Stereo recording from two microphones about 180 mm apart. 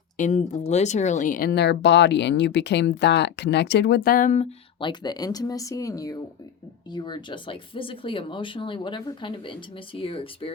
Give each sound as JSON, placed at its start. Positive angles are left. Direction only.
{"t": 0.2, "sound": "speech", "side_deg": 45}
{"t": 4.8, "sound": "speech", "side_deg": 25}